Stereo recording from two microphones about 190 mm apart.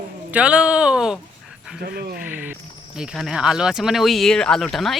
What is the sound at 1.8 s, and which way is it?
Speech, 55° right (ahead or behind).